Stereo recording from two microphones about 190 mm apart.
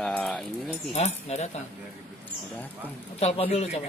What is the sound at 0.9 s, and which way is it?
Speech, 35° left (ahead or behind).